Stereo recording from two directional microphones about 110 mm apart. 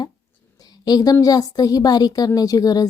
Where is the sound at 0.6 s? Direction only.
35° left (ahead or behind).